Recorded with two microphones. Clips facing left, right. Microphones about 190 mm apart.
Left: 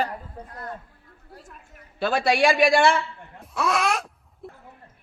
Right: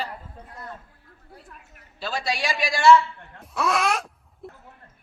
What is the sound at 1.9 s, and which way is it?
A woman's voice, 55° left (ahead or behind).